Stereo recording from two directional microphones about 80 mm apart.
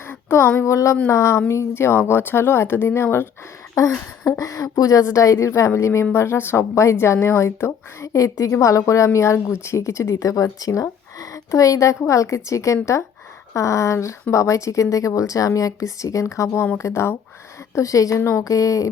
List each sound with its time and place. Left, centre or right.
0.1 s a woman's voice: left
3.8 s a woman's voice: left
18.2 s speech: left
18.4 s speech: left